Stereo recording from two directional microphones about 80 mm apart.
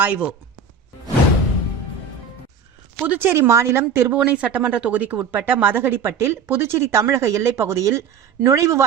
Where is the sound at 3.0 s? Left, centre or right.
Right.